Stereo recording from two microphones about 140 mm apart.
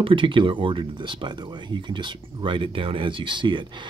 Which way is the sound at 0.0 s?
40° right (ahead or behind).